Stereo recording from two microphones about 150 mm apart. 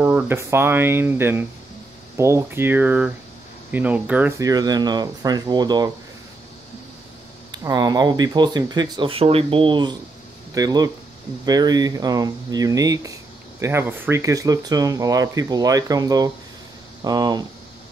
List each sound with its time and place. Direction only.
0.0 s speech: 15° right (ahead or behind)
4.4 s speech: 25° right (ahead or behind)
7.5 s speech: 25° right (ahead or behind)